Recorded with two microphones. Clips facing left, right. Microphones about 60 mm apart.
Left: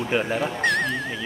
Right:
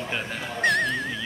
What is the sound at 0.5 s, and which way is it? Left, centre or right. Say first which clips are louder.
Music: right 3 dB; centre.